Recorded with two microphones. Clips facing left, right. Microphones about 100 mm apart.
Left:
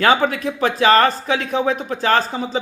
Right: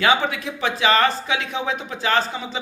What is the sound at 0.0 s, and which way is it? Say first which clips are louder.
Speech: left 4 dB; 45° left (ahead or behind).